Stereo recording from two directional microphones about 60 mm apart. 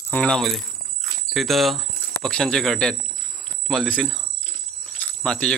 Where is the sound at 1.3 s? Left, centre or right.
Centre.